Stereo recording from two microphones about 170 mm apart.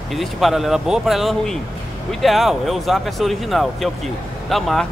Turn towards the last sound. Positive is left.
turn(degrees=0)  # may be behind; listen again after turning